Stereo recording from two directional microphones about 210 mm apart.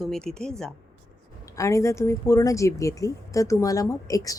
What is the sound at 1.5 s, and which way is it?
Speech, 15° left (ahead or behind).